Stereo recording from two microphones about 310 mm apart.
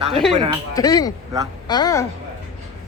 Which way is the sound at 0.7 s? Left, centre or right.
Centre.